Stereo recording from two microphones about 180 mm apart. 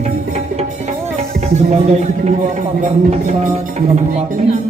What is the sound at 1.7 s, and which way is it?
Speech, 35° right (ahead or behind).